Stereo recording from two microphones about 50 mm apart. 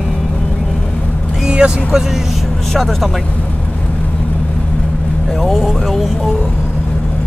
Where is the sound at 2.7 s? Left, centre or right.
Centre.